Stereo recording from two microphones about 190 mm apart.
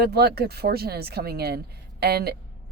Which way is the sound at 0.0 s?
55° right (ahead or behind).